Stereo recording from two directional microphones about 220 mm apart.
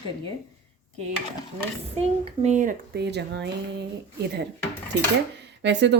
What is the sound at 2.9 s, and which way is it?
Speech, 50° right (ahead or behind).